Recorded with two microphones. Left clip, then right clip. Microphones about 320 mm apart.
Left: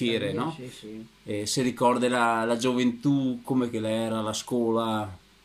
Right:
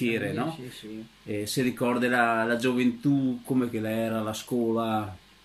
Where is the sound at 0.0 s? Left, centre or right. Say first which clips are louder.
Left 1 dB; centre.